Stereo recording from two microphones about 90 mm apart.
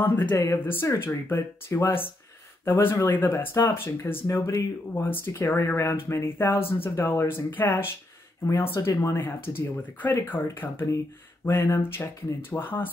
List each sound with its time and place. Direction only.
0.0 s speech: 20° left (ahead or behind)
9.2 s speech: 25° left (ahead or behind)